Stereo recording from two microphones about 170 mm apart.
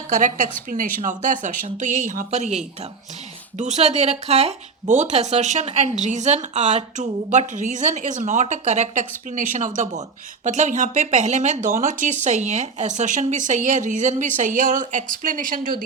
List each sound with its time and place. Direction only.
0.1 s speech: 45° right (ahead or behind)
3.6 s speech: 40° right (ahead or behind)